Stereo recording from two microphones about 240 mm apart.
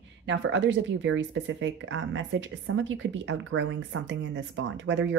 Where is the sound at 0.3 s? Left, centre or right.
Right.